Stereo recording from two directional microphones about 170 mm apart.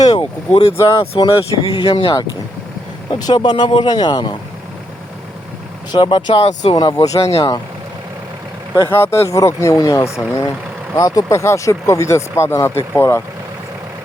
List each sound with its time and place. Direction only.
0.0 s speech: 25° left (ahead or behind)
5.9 s speech: 30° left (ahead or behind)
6.7 s speech: 25° left (ahead or behind)
8.7 s speech: 15° left (ahead or behind)